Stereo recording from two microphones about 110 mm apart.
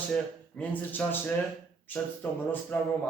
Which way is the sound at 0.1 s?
15° left (ahead or behind).